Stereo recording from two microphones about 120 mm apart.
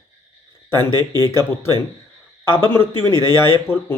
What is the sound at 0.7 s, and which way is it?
Speech, 35° right (ahead or behind).